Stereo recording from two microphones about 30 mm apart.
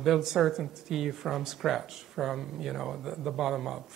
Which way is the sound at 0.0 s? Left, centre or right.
Centre.